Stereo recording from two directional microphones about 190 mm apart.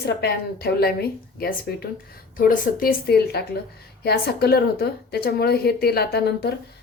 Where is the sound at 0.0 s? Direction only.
55° left (ahead or behind).